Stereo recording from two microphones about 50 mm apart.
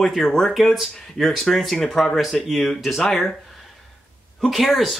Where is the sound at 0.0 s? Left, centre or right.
Centre.